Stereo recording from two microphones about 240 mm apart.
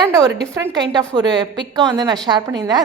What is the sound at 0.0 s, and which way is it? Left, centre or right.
A woman's voice, centre.